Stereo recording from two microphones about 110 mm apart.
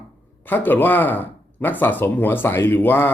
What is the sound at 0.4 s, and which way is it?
Speech, 15° left (ahead or behind).